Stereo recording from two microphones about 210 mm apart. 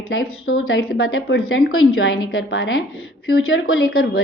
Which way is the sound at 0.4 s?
75° left (ahead or behind).